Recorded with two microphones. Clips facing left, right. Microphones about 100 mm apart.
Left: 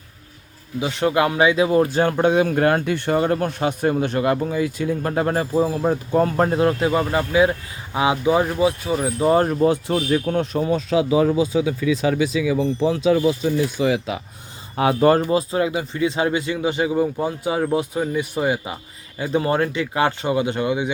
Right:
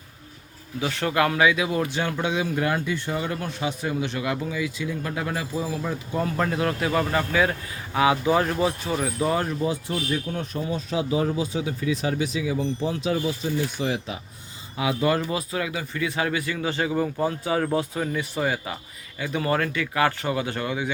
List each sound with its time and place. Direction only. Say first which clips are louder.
0.8 s speech: left 4 dB; 20° left (ahead or behind)
9.0 s speech: left 8 dB; 30° left (ahead or behind)
9.4 s speech: left 8 dB; 50° left (ahead or behind); by 11.0 s 90° left
12.4 s speech: left 6 dB; 90° left
14.8 s speech: left 7 dB; 45° left (ahead or behind)
15.3 s speech: left 8 dB; 30° left (ahead or behind)